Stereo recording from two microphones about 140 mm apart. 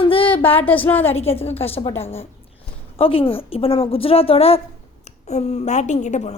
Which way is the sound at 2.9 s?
40° left (ahead or behind).